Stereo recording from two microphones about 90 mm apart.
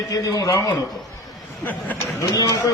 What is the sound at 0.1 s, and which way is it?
Speech, 40° left (ahead or behind).